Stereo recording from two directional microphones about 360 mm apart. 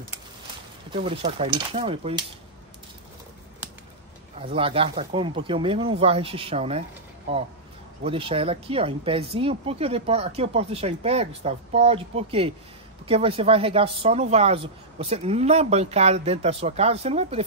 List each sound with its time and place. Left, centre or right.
0.9 s speech: centre
4.4 s speech: centre